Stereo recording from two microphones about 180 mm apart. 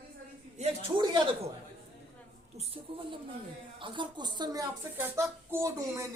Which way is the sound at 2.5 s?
30° right (ahead or behind).